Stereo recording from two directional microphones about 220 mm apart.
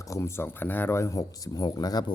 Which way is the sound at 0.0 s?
15° left (ahead or behind).